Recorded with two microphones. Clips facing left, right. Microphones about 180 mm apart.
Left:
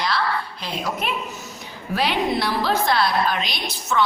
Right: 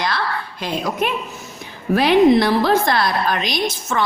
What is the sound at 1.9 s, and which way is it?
A woman's voice, 50° right (ahead or behind).